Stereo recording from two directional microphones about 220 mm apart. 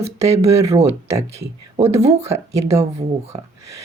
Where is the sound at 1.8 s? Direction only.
30° right (ahead or behind).